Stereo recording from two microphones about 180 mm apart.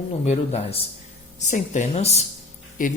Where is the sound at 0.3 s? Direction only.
35° left (ahead or behind).